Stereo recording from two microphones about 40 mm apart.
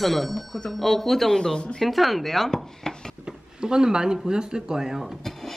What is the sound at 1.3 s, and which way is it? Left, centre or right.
Speech, centre.